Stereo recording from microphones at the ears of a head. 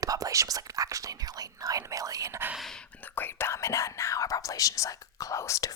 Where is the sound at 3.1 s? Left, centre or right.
Left.